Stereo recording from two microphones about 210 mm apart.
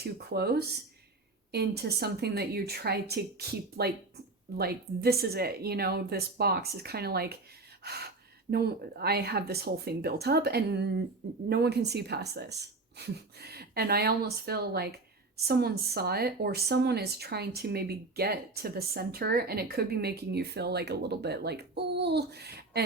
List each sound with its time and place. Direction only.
0.0 s speech: 50° right (ahead or behind)